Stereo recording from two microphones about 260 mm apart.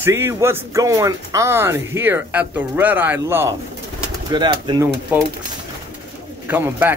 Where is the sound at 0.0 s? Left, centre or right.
Centre.